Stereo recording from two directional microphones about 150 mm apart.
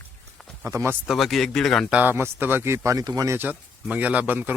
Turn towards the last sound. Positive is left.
turn(degrees=-10)  # may be behind; listen again after turning